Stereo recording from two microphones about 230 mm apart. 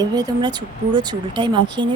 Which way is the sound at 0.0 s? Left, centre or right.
Centre.